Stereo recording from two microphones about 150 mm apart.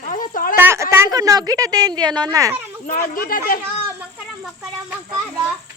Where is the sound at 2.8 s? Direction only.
65° left (ahead or behind).